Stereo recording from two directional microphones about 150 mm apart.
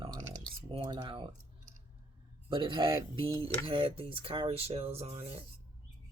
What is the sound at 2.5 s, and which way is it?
Speech, 35° right (ahead or behind).